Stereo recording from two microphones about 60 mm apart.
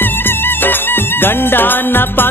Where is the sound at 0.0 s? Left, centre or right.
Left.